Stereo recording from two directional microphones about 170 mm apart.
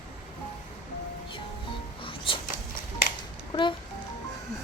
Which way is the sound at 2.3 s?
30° left (ahead or behind).